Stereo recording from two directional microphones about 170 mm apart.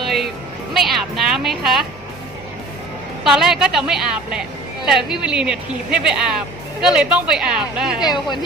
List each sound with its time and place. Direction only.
0.0 s music: centre (ahead or behind)
0.7 s speech: centre (ahead or behind)
3.2 s a woman's voice: 5° right (ahead or behind)